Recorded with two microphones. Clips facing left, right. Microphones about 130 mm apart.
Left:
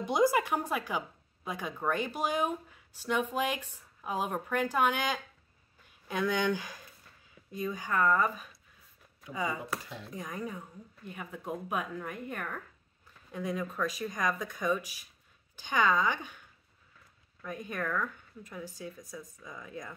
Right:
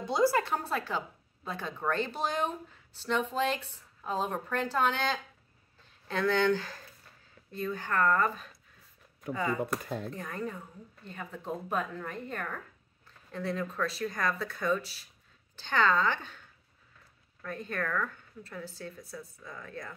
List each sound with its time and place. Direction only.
0.0 s a woman's voice: 15° left (ahead or behind)
5.8 s a sound: 10° left (ahead or behind)
7.5 s a woman's voice: 10° left (ahead or behind)
9.8 s speech: 50° right (ahead or behind)
10.1 s a woman's voice: 10° left (ahead or behind)